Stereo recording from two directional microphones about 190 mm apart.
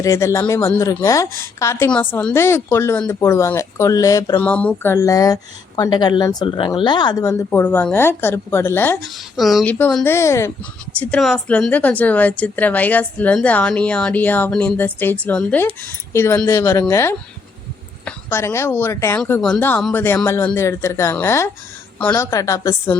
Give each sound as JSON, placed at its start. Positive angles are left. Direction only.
{"t": 0.0, "sound": "a woman's voice", "side_deg": 15}
{"t": 4.4, "sound": "a woman's voice", "side_deg": 5}
{"t": 9.3, "sound": "a woman's voice", "side_deg": 0}
{"t": 19.2, "sound": "a woman's voice", "side_deg": 5}